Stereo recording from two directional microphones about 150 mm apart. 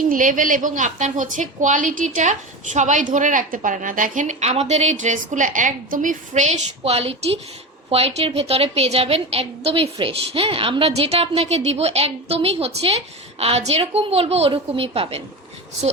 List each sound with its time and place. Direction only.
0.0 s a woman's voice: 60° right (ahead or behind); by 15.2 s 40° right (ahead or behind)